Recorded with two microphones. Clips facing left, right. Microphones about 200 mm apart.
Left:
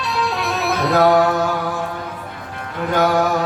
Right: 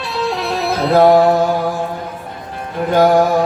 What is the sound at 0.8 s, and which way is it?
Music, 25° right (ahead or behind).